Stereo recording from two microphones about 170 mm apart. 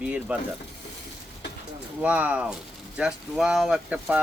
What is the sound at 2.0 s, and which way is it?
Speech, 10° right (ahead or behind).